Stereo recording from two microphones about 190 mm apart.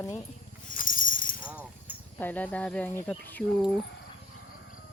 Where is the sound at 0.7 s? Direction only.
45° left (ahead or behind).